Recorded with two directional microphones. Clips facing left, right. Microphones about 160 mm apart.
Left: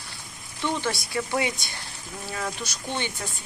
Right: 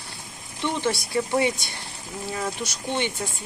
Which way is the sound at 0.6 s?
25° right (ahead or behind).